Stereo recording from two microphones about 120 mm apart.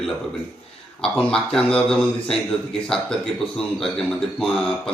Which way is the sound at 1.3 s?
5° left (ahead or behind).